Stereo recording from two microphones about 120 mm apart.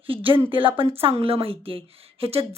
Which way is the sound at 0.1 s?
45° right (ahead or behind).